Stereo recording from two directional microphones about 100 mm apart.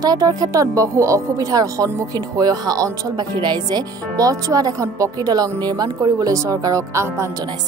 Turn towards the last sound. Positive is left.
turn(degrees=-30)  # may be behind; listen again after turning